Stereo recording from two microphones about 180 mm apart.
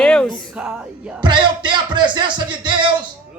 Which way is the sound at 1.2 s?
25° right (ahead or behind).